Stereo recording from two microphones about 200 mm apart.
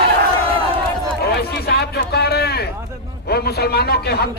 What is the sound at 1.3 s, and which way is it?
A man's voice, 55° left (ahead or behind).